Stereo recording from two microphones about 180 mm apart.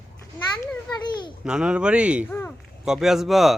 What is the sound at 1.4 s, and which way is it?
Speech, 5° right (ahead or behind).